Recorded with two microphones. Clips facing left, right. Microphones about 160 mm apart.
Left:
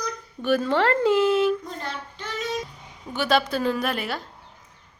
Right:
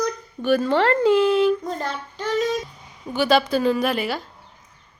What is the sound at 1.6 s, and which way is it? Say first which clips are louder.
Child singing: right 6 dB; 40° right (ahead or behind).